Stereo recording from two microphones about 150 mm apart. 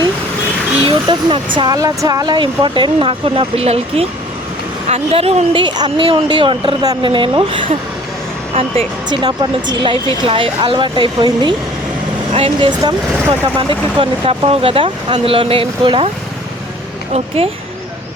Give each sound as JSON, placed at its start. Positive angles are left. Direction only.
{"t": 0.9, "sound": "speech", "side_deg": -35}
{"t": 17.2, "sound": "speech", "side_deg": -40}